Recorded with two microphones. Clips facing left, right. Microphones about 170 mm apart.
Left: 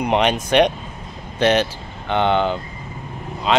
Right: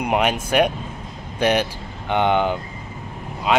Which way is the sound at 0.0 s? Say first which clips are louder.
Left 2 dB; 10° right (ahead or behind).